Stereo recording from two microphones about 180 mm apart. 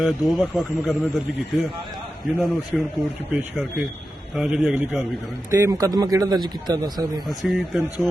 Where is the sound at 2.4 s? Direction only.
Centre (ahead or behind); by 7.2 s 25° right (ahead or behind).